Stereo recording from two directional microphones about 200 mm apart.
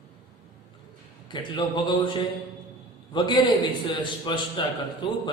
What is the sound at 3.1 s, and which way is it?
A man's voice, 25° left (ahead or behind).